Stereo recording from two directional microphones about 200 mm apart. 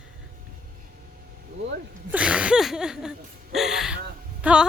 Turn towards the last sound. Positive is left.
turn(degrees=-5)  # may be behind; listen again after turning